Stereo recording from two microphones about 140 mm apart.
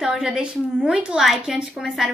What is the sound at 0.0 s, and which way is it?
A woman's voice, 5° right (ahead or behind).